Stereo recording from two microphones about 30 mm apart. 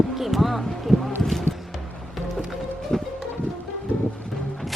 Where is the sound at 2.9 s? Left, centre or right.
Centre.